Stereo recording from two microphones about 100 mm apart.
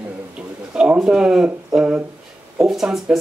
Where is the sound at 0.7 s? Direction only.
10° right (ahead or behind).